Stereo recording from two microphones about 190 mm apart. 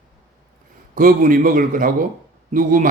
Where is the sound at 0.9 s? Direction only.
45° right (ahead or behind).